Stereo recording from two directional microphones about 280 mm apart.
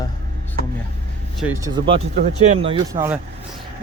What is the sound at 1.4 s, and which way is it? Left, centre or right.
Speech, centre.